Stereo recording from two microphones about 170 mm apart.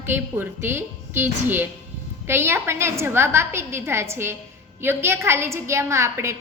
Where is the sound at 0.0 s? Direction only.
15° right (ahead or behind).